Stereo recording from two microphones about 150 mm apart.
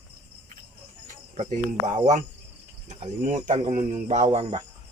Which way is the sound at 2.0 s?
55° right (ahead or behind).